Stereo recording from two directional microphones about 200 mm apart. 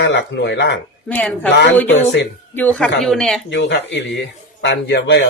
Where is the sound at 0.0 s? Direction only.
60° left (ahead or behind).